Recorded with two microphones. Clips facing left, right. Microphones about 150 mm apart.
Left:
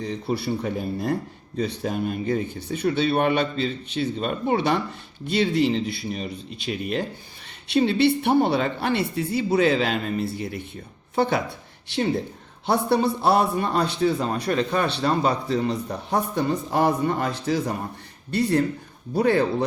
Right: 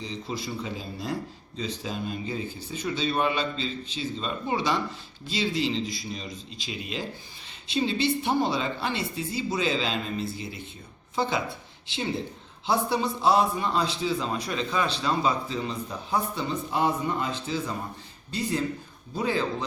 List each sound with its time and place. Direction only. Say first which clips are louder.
0.0 s speech: left 7 dB; 60° left (ahead or behind)
12.6 s a man's voice: left 5 dB; 65° left (ahead or behind)